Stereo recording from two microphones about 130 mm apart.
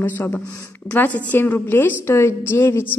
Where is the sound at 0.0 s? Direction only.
20° left (ahead or behind).